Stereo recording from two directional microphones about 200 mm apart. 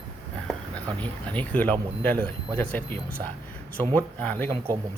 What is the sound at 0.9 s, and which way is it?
Speech, 5° left (ahead or behind).